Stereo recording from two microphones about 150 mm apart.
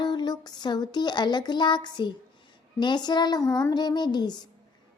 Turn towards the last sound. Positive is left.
turn(degrees=30)  # may be behind; listen again after turning